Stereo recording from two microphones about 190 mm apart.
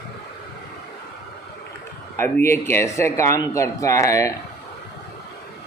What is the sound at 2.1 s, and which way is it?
A man's voice, 15° left (ahead or behind).